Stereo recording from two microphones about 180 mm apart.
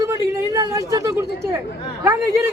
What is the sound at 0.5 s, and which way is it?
Speech, 20° right (ahead or behind).